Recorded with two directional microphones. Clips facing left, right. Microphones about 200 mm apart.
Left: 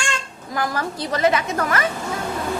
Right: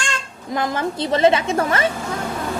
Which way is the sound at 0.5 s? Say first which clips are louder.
Right 3 dB; 20° right (ahead or behind).